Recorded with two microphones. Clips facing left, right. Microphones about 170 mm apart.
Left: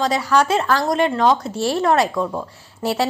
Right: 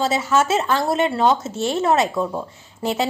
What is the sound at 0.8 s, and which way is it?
A woman's voice, 5° right (ahead or behind).